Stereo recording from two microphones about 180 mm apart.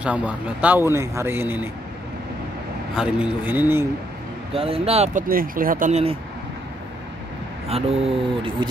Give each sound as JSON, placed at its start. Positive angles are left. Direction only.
{"t": 0.0, "sound": "speech", "side_deg": -10}
{"t": 3.0, "sound": "speech", "side_deg": -5}
{"t": 4.6, "sound": "speech", "side_deg": -30}
{"t": 5.3, "sound": "speech", "side_deg": -50}
{"t": 7.6, "sound": "speech", "side_deg": -35}